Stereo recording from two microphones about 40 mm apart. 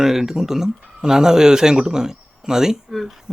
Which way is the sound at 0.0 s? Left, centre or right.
Centre.